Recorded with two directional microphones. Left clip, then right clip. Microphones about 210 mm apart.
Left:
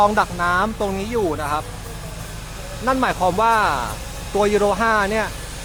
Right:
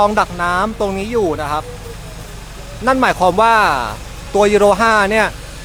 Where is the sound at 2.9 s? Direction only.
15° right (ahead or behind).